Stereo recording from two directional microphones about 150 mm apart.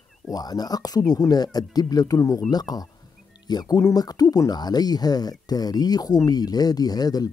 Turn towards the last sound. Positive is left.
turn(degrees=25)  # may be behind; listen again after turning